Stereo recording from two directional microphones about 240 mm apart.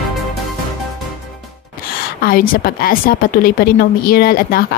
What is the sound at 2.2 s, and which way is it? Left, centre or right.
A woman's voice, left.